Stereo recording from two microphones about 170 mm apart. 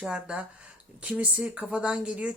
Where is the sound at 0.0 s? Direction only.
5° right (ahead or behind).